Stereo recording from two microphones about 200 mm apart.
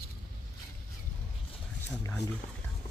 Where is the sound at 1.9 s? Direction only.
10° left (ahead or behind).